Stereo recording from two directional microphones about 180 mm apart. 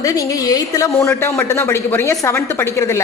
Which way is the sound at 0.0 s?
20° left (ahead or behind).